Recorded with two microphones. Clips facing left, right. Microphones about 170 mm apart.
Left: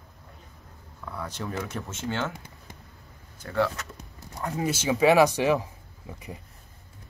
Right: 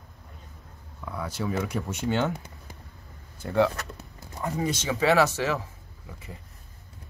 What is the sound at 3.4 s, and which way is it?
Speech, 15° right (ahead or behind).